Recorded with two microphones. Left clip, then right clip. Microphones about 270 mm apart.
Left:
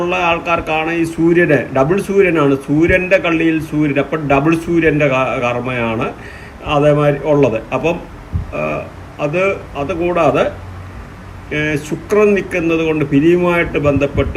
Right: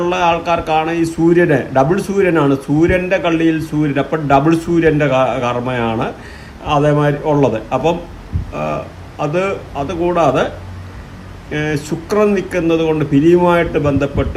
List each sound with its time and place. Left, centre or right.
0.0 s a man's voice: centre
11.5 s a man's voice: centre